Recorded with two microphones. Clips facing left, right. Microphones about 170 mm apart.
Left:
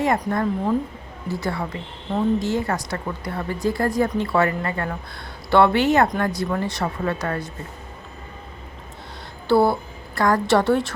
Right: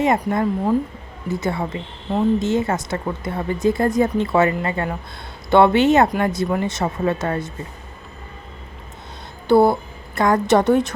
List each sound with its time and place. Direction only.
0.0 s a woman's voice: 20° right (ahead or behind)
9.5 s a woman's voice: 20° right (ahead or behind)